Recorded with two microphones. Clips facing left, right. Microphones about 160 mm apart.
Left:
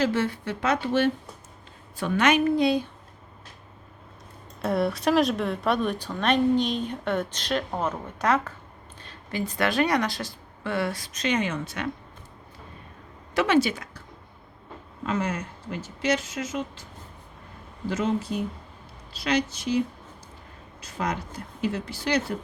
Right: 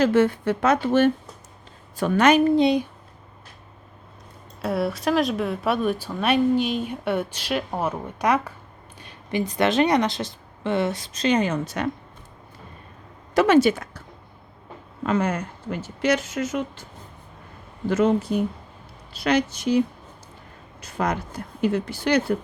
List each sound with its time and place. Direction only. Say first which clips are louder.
0.0 s a woman's voice: right 6 dB; 50° right (ahead or behind)
2.6 s speech: right 4 dB; 20° right (ahead or behind)
4.6 s speech: even; centre (ahead or behind); by 11.9 s 40° right (ahead or behind)
13.3 s speech: right 5 dB; 45° right (ahead or behind)
15.0 s speech: right 5 dB; 60° right (ahead or behind)
17.8 s speech: right 6 dB; 60° right (ahead or behind)
20.8 s speech: right 4 dB; 60° right (ahead or behind)